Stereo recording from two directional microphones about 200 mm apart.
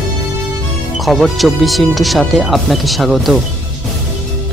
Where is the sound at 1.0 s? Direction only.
Centre (ahead or behind).